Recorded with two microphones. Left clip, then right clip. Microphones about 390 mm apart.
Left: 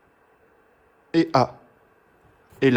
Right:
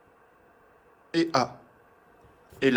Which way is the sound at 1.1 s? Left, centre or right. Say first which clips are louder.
Left 5 dB; centre.